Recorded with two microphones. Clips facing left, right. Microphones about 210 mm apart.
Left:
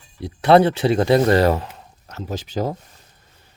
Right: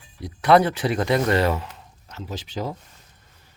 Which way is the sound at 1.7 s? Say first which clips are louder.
Left 3 dB; 45° left (ahead or behind).